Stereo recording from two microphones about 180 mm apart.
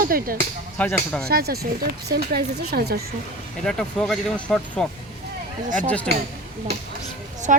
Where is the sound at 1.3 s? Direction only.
60° right (ahead or behind).